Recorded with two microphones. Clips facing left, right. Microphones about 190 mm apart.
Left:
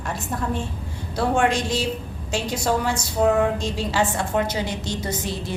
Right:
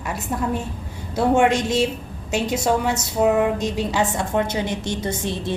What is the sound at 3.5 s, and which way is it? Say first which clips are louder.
A woman's voice: right 2 dB; 20° right (ahead or behind).